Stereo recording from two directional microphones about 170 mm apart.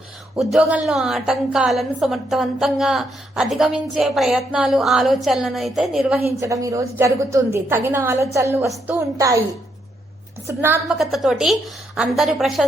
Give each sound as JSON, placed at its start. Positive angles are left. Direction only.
{"t": 0.4, "sound": "a woman's voice", "side_deg": 0}
{"t": 6.4, "sound": "a woman's voice", "side_deg": -20}
{"t": 10.4, "sound": "a woman's voice", "side_deg": -10}
{"t": 10.9, "sound": "a woman's voice", "side_deg": 0}